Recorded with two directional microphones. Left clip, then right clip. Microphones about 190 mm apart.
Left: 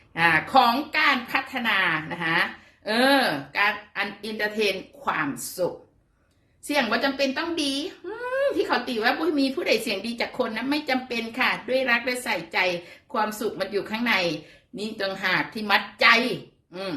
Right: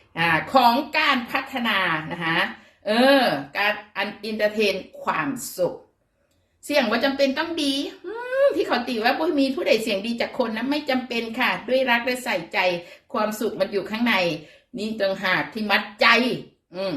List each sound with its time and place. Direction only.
0.1 s a woman's voice: 15° left (ahead or behind)
6.7 s a woman's voice: 15° left (ahead or behind)